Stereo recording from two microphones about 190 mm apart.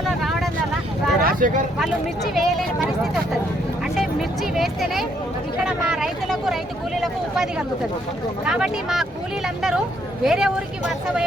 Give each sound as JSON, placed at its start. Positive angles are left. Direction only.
{"t": 0.2, "sound": "vehicle", "side_deg": 0}
{"t": 1.2, "sound": "a sound", "side_deg": -50}
{"t": 4.5, "sound": "speech", "side_deg": 0}
{"t": 8.4, "sound": "speech", "side_deg": -5}
{"t": 10.2, "sound": "speech", "side_deg": -5}